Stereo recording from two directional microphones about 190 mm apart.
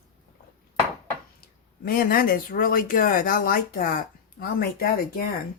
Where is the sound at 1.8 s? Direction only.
50° left (ahead or behind).